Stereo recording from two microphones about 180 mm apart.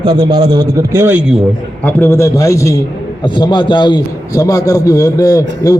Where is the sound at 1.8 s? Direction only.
15° left (ahead or behind).